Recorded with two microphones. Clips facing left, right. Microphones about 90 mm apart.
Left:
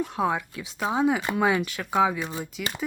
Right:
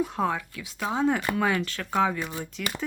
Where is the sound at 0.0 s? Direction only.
Centre (ahead or behind).